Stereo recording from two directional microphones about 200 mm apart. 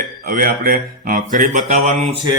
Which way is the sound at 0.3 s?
45° right (ahead or behind).